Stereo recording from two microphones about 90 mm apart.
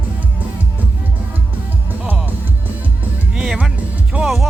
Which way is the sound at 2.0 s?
20° right (ahead or behind).